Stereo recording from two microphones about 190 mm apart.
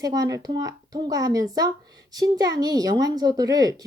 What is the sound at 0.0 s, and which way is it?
Speech, 20° right (ahead or behind).